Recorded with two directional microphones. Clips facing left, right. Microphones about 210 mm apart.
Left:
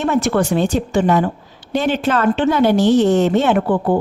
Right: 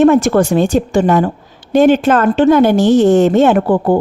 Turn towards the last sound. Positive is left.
turn(degrees=-40)  # may be behind; listen again after turning